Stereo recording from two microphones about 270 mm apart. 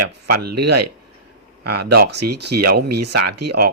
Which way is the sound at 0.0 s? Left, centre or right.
Right.